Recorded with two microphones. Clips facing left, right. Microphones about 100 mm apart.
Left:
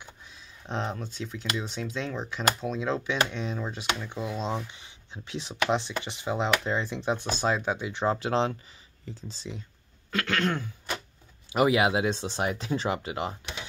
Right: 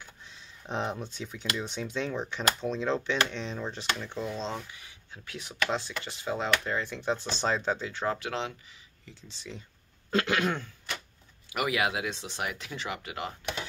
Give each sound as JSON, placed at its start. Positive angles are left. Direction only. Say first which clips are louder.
{"t": 0.3, "sound": "speech", "louder": "even", "side_deg": -5}
{"t": 4.6, "sound": "speech", "louder": "left 1 dB", "side_deg": 25}
{"t": 7.3, "sound": "speech", "louder": "left 2 dB", "side_deg": 5}
{"t": 10.1, "sound": "throat clearing", "louder": "right 1 dB", "side_deg": -15}
{"t": 11.5, "sound": "speech", "louder": "left 6 dB", "side_deg": 25}